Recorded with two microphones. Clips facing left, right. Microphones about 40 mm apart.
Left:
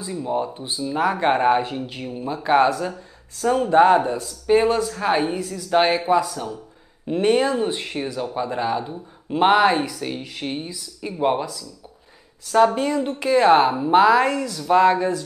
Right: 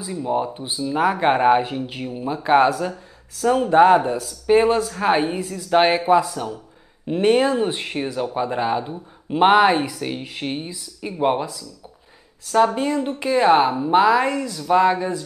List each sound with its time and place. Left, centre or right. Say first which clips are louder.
0.0 s a woman's voice: right 2 dB; centre
4.5 s speech: right 1 dB; centre
12.4 s a woman's voice: left 1 dB; centre
12.7 s a woman's voice: even; centre